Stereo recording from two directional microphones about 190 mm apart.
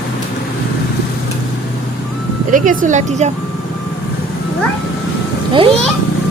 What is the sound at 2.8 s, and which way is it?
Speech, 40° right (ahead or behind).